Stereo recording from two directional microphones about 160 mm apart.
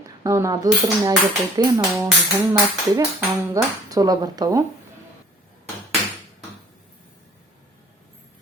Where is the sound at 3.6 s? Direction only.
20° right (ahead or behind).